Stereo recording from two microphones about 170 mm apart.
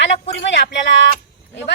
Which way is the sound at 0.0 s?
90° left.